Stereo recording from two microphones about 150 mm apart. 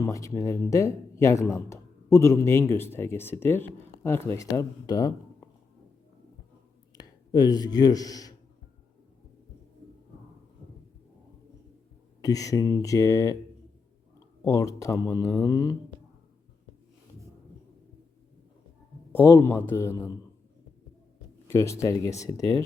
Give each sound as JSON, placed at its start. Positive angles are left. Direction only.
{"t": 0.0, "sound": "speech", "side_deg": 20}
{"t": 6.9, "sound": "speech", "side_deg": 25}
{"t": 12.2, "sound": "speech", "side_deg": 25}
{"t": 14.4, "sound": "speech", "side_deg": 20}
{"t": 19.1, "sound": "a man's voice", "side_deg": 15}
{"t": 21.5, "sound": "speech", "side_deg": 20}